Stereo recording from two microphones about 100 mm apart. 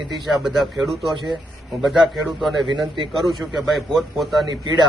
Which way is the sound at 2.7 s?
55° right (ahead or behind).